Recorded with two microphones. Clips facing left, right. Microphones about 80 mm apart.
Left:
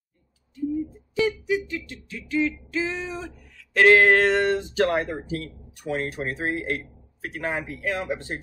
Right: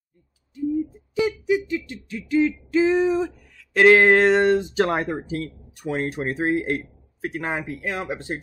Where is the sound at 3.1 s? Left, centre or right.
Centre.